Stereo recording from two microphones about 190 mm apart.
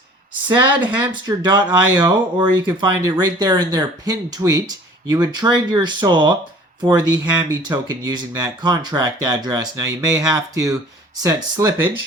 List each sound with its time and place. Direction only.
0.9 s speech: 20° right (ahead or behind)